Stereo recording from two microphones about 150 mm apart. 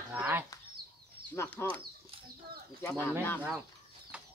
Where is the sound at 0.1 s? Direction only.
10° right (ahead or behind).